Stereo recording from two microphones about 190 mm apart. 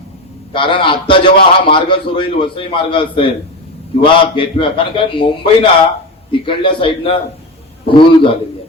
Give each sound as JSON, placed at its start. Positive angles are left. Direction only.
{"t": 0.5, "sound": "a man's voice", "side_deg": 25}